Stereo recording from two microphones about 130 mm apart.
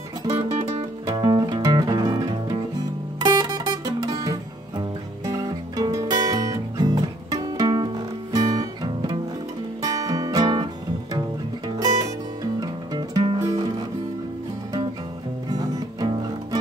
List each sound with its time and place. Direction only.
0.3 s music: 30° right (ahead or behind)
15.5 s music: 30° right (ahead or behind)